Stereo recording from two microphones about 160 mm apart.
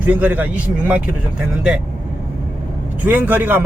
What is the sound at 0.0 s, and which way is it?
Speech, 10° right (ahead or behind).